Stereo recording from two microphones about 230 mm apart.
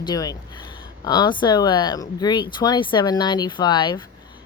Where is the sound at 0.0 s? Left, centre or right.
Centre.